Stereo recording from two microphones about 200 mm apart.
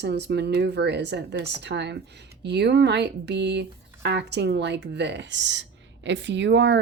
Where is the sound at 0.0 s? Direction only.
60° right (ahead or behind).